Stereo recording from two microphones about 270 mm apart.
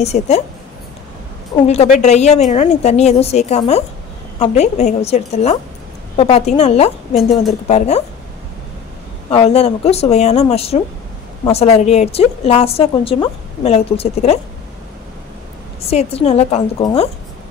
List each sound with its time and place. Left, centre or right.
0.0 s a woman's voice: left
1.7 s a woman's voice: left
9.3 s a woman's voice: left
15.9 s a woman's voice: left